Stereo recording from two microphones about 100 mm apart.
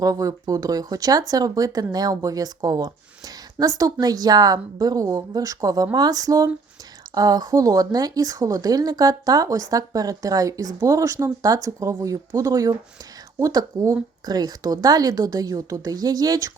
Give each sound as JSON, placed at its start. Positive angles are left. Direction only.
{"t": 0.0, "sound": "speech", "side_deg": -35}